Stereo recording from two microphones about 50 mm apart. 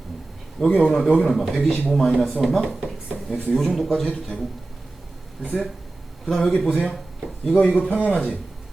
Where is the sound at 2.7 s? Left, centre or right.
Centre.